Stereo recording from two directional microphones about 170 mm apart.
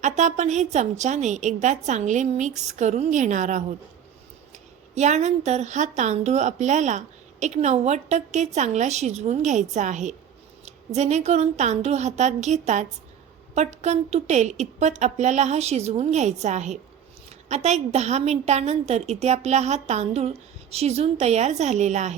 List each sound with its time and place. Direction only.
0.0 s a woman's voice: 45° right (ahead or behind)
4.9 s a woman's voice: 45° right (ahead or behind)